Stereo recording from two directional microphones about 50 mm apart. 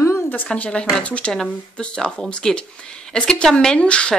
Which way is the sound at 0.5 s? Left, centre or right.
Left.